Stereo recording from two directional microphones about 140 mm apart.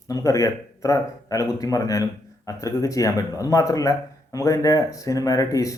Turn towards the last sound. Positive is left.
turn(degrees=25)  # may be behind; listen again after turning